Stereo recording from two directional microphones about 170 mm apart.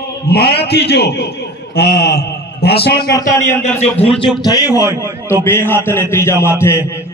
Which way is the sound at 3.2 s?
15° left (ahead or behind).